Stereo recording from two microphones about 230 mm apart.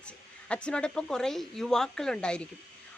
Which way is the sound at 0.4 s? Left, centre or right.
Centre.